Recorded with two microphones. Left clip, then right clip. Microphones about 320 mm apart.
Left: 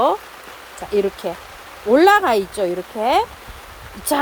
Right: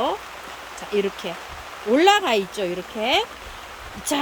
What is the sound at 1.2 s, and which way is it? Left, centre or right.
Speech, centre.